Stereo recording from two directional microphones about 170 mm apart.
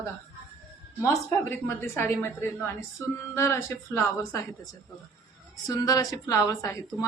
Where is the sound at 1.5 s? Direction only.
15° left (ahead or behind).